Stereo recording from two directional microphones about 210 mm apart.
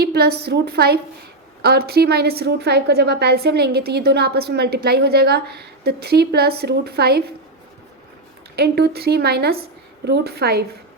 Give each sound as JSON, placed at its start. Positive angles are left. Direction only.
{"t": 0.0, "sound": "a woman's voice", "side_deg": -50}
{"t": 8.5, "sound": "a woman's voice", "side_deg": -50}